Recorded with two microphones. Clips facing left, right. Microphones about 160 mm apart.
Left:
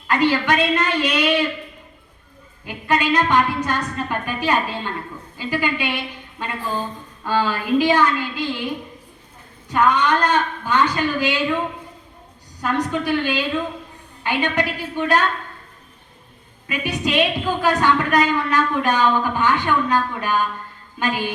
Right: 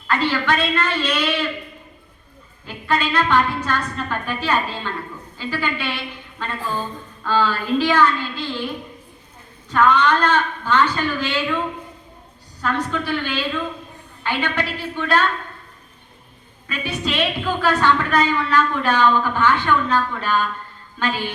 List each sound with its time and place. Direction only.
0.1 s a woman's voice: 15° left (ahead or behind)
2.6 s a woman's voice: 15° left (ahead or behind)
7.3 s a woman's voice: 15° left (ahead or behind)
9.7 s a woman's voice: 15° left (ahead or behind)
12.6 s a woman's voice: 15° left (ahead or behind)
16.6 s a woman's voice: 15° left (ahead or behind)